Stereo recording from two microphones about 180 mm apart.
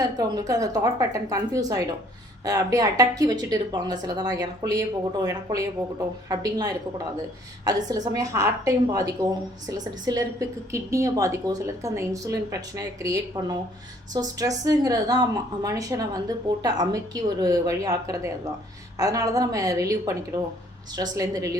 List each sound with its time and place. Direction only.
0.0 s a woman's voice: 20° right (ahead or behind)